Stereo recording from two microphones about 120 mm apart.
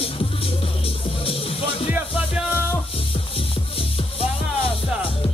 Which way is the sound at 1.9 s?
10° right (ahead or behind).